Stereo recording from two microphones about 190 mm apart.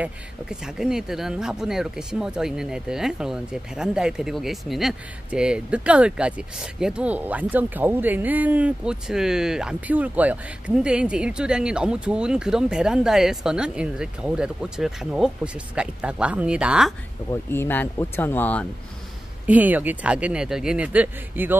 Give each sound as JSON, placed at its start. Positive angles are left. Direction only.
{"t": 0.0, "sound": "speech", "side_deg": -5}
{"t": 17.3, "sound": "speech", "side_deg": 10}
{"t": 19.4, "sound": "a man's voice", "side_deg": -10}